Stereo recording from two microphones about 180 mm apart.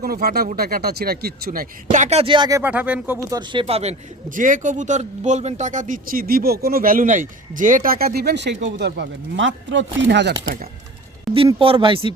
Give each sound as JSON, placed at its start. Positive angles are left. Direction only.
{"t": 0.0, "sound": "speech", "side_deg": -55}
{"t": 2.6, "sound": "speech", "side_deg": -10}
{"t": 3.2, "sound": "speech", "side_deg": -25}
{"t": 11.3, "sound": "speech", "side_deg": 0}
{"t": 11.6, "sound": "speech", "side_deg": -30}